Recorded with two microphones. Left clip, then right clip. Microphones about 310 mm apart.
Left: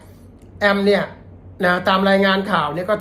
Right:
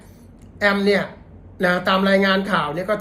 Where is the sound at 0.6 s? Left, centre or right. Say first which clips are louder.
Left 2 dB; centre.